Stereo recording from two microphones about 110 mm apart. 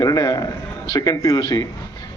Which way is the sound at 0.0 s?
35° left (ahead or behind).